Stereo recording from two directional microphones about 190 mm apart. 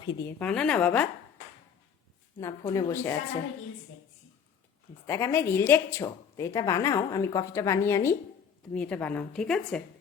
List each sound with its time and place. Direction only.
0.0 s a woman's voice: 25° left (ahead or behind)
0.3 s speech: 5° left (ahead or behind)
2.4 s speech: 20° left (ahead or behind)
5.0 s speech: 15° left (ahead or behind)